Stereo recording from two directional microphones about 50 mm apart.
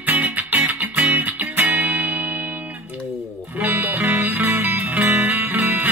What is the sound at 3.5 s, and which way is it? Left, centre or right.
Music, right.